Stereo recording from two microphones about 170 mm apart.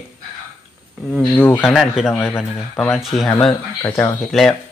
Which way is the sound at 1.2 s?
10° left (ahead or behind).